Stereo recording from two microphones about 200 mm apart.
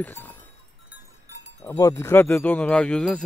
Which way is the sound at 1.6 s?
15° left (ahead or behind).